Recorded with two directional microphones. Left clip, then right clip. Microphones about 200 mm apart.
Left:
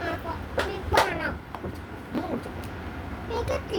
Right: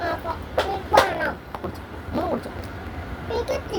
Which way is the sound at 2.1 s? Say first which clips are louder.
Right 6 dB; centre (ahead or behind).